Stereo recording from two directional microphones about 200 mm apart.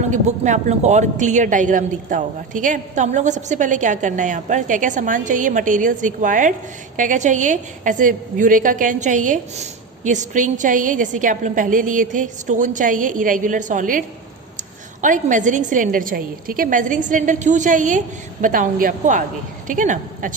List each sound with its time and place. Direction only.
0.1 s a woman's voice: 35° right (ahead or behind)
15.0 s a woman's voice: 40° right (ahead or behind)